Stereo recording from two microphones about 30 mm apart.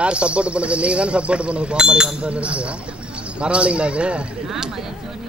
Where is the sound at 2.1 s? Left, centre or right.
Right.